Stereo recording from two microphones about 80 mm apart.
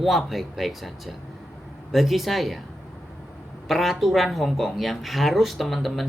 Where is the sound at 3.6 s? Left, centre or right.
Centre.